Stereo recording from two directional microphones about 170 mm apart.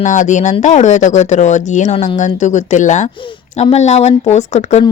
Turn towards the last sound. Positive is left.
turn(degrees=40)  # may be behind; listen again after turning